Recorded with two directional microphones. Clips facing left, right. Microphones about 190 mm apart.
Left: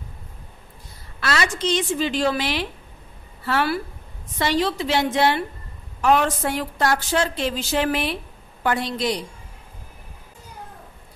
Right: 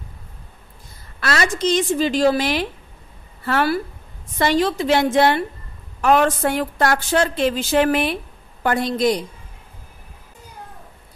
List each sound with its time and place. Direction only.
1.2 s a woman's voice: 45° right (ahead or behind)